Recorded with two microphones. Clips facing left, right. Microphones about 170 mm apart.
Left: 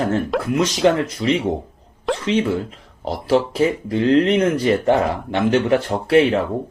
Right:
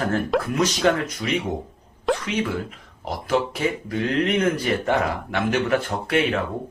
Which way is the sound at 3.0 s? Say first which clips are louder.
Left 5 dB; 30° left (ahead or behind).